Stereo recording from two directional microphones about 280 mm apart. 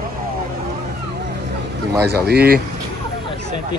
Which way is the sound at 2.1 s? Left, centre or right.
Right.